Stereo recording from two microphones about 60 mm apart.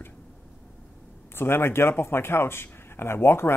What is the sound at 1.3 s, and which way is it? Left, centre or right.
Speech, left.